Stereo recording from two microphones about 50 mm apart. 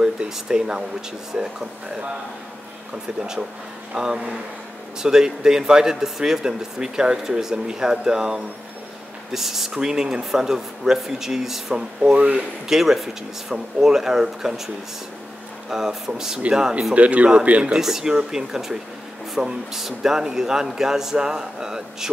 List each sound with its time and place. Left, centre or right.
0.0 s speech: centre
3.2 s speech: centre
12.0 s speech: right
15.7 s speech: centre
16.5 s speech: right
17.7 s speech: centre